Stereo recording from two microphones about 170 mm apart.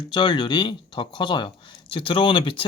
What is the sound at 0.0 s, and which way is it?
Speech, 30° left (ahead or behind).